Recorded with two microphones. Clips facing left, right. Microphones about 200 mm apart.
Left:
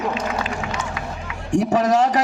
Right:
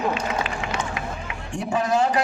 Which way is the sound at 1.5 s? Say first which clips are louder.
Left 6 dB; 80° left.